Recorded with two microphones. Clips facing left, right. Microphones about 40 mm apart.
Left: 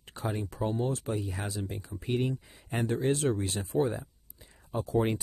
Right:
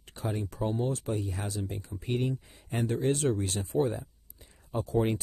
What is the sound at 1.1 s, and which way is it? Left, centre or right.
Speech, centre.